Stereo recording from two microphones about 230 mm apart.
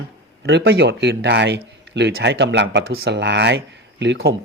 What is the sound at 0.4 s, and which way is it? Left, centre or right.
Speech, right.